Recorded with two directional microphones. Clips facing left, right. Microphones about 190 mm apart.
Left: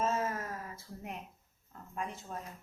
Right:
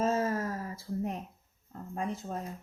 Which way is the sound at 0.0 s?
35° right (ahead or behind).